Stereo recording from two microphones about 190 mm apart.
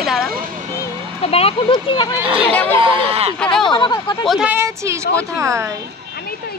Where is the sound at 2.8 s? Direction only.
25° right (ahead or behind).